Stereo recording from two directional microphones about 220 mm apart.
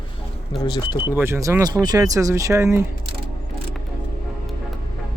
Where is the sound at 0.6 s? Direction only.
20° left (ahead or behind).